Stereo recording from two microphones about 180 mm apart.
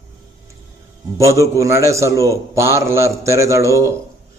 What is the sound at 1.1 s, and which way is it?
A man's voice, 15° right (ahead or behind).